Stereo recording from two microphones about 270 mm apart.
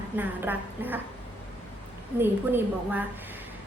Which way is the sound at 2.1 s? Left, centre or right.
Centre.